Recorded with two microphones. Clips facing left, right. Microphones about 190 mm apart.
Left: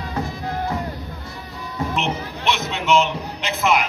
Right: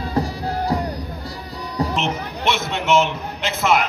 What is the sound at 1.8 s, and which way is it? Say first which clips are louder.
Music: right 3 dB; 35° right (ahead or behind).